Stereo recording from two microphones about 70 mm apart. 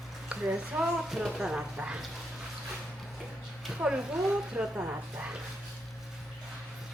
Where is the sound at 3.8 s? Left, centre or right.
Centre.